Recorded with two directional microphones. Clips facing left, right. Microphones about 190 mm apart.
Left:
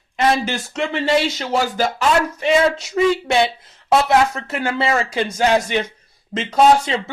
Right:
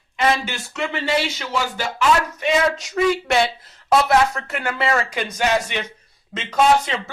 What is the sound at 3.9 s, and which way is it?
Speech, 25° left (ahead or behind).